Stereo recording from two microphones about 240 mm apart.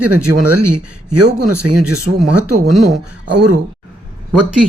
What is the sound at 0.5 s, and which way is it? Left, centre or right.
Speech, right.